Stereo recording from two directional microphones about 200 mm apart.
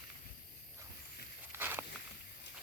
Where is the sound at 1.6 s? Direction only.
10° right (ahead or behind).